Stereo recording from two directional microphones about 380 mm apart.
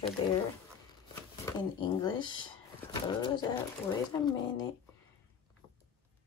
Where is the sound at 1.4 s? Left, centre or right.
Centre.